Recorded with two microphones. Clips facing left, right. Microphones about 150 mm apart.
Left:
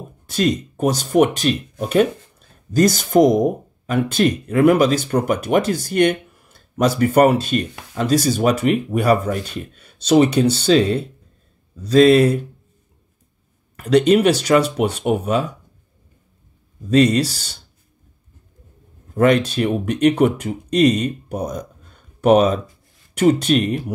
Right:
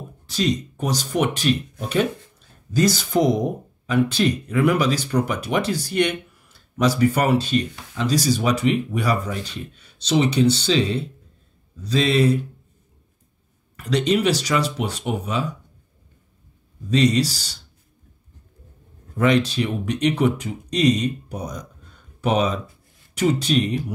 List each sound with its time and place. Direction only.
0.3 s speech: 50° left (ahead or behind)
13.7 s speech: 50° left (ahead or behind)
16.9 s speech: 50° left (ahead or behind)
19.1 s speech: 50° left (ahead or behind)